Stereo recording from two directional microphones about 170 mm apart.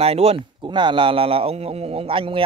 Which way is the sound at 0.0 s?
35° right (ahead or behind).